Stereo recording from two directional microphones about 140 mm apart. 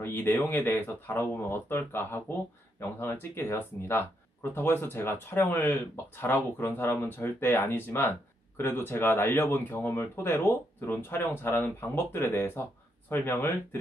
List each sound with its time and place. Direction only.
0.0 s speech: 15° left (ahead or behind)